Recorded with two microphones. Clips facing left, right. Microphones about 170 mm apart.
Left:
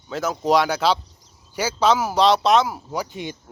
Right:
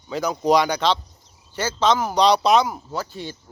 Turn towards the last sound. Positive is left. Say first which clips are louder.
# left 2 dB
turn(degrees=15)  # may be behind; listen again after turning